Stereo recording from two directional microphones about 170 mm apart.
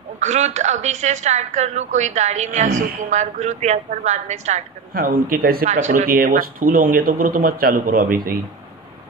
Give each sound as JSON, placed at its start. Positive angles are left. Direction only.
{"t": 0.2, "sound": "speech", "side_deg": -45}
{"t": 4.9, "sound": "speech", "side_deg": -60}
{"t": 5.7, "sound": "speech", "side_deg": -45}